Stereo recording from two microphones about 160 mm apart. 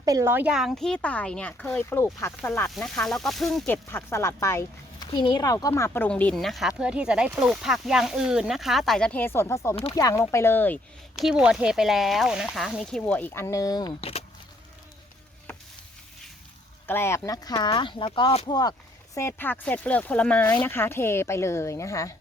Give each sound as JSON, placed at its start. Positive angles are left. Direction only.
{"t": 0.0, "sound": "speech", "side_deg": -20}
{"t": 2.6, "sound": "speech", "side_deg": 0}
{"t": 3.7, "sound": "speech", "side_deg": 15}
{"t": 11.2, "sound": "speech", "side_deg": -5}
{"t": 14.0, "sound": "speech", "side_deg": 40}
{"t": 16.8, "sound": "speech", "side_deg": 15}
{"t": 19.1, "sound": "speech", "side_deg": 15}